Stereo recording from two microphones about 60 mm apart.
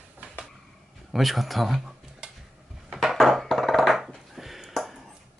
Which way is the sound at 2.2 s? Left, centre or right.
Centre.